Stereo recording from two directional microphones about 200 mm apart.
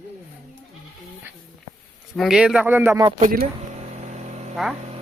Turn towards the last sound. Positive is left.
turn(degrees=0)  # may be behind; listen again after turning